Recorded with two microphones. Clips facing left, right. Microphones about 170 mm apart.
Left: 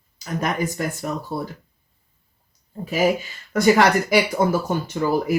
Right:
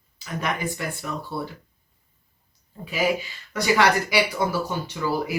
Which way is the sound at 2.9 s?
45° left (ahead or behind).